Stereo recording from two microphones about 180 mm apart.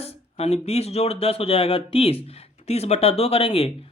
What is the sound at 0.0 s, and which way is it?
Speech, 35° left (ahead or behind).